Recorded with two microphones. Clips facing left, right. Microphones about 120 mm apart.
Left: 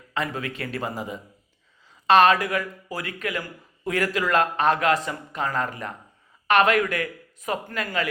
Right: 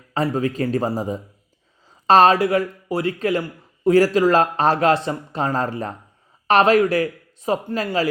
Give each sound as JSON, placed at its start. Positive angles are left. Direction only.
{"t": 0.1, "sound": "speech", "side_deg": -35}